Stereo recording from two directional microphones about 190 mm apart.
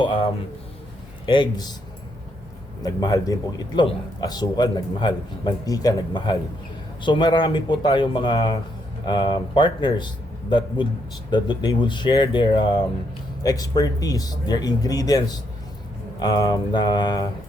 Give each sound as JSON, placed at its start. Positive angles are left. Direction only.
{"t": 0.0, "sound": "a man's voice", "side_deg": 25}
{"t": 1.3, "sound": "a man's voice", "side_deg": 20}
{"t": 2.8, "sound": "a man's voice", "side_deg": 20}
{"t": 11.3, "sound": "a man's voice", "side_deg": 25}